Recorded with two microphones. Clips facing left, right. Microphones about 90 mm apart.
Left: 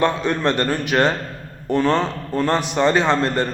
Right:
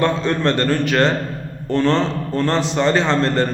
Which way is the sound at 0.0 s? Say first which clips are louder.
Right 1 dB; 15° left (ahead or behind).